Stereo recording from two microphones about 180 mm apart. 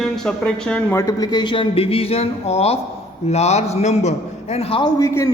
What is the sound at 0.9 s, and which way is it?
A man's voice, 20° left (ahead or behind).